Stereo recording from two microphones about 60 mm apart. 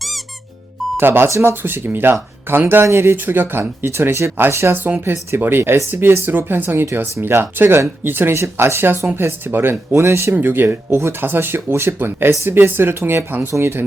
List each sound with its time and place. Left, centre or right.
0.9 s speech: right
1.3 s speech: right
1.6 s speech: right
9.9 s speech: right
10.3 s speech: right